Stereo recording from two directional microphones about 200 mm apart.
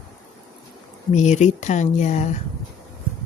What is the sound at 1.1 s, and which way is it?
Speech, 35° left (ahead or behind).